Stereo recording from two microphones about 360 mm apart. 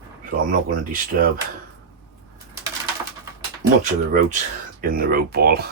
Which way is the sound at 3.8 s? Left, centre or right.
Right.